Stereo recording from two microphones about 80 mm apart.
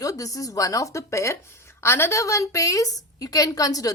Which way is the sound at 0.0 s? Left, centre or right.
Left.